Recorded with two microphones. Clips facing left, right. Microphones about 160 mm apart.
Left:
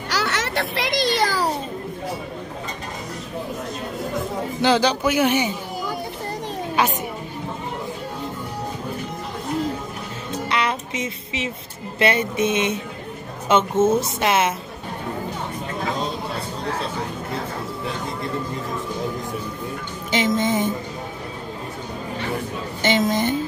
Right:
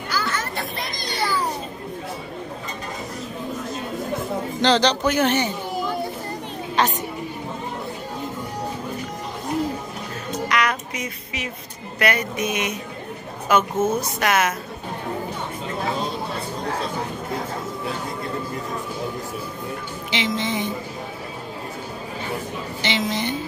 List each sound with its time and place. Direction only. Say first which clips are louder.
0.1 s children playing: left 3 dB; 75° left (ahead or behind)
4.6 s speech: even; 10° left (ahead or behind)
6.8 s a sound: even; 10° left (ahead or behind)
10.5 s child singing: even; 25° left (ahead or behind)
12.0 s speech: left 3 dB; 25° left (ahead or behind)
20.1 s music: left 5 dB; 45° left (ahead or behind)
22.8 s music: left 5 dB; 45° left (ahead or behind)